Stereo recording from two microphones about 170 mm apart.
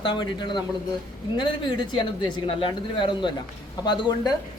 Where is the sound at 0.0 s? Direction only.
30° left (ahead or behind).